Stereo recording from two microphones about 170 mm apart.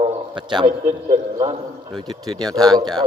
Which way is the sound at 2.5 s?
25° right (ahead or behind).